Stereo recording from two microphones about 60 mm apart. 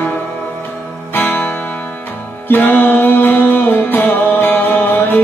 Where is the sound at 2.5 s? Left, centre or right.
Left.